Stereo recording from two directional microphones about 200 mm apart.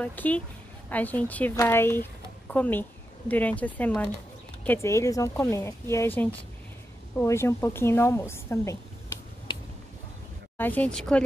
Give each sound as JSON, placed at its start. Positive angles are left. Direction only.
{"t": 0.0, "sound": "speech", "side_deg": 10}
{"t": 9.5, "sound": "a sound", "side_deg": 20}
{"t": 10.6, "sound": "speech", "side_deg": 10}